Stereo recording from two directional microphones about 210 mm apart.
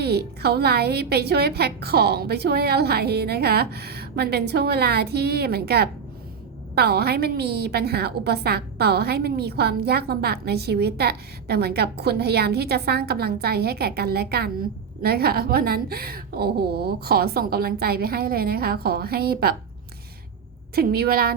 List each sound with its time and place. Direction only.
0.0 s a woman's voice: 50° right (ahead or behind)
20.7 s a woman's voice: 45° right (ahead or behind)